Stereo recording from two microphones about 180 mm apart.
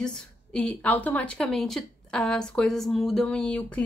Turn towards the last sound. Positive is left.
turn(degrees=5)  # may be behind; listen again after turning